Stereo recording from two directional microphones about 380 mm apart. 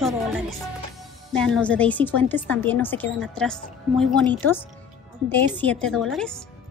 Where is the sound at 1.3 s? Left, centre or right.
Centre.